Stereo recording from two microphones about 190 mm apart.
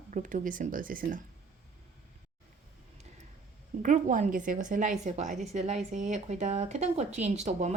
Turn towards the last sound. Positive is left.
turn(degrees=-35)  # may be behind; listen again after turning